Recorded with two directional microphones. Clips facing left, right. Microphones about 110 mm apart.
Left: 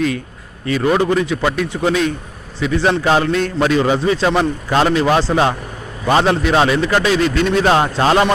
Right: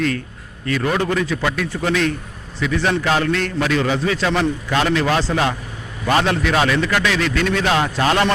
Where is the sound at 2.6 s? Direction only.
30° left (ahead or behind).